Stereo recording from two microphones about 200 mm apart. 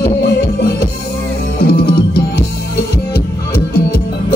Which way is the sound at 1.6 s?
50° left (ahead or behind).